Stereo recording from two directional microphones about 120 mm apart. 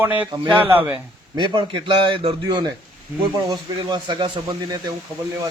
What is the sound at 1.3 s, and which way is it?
A man's voice, 40° right (ahead or behind).